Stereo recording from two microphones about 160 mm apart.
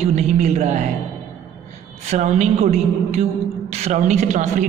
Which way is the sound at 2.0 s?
45° right (ahead or behind).